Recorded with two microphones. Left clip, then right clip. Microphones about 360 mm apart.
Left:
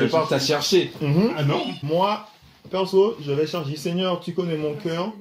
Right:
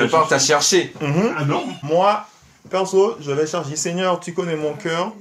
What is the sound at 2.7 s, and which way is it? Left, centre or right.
Speech, right.